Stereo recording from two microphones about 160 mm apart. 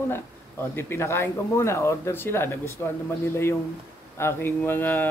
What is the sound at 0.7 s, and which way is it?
Speech, 15° left (ahead or behind).